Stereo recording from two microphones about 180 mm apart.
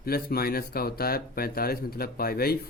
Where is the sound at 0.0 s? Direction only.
55° left (ahead or behind).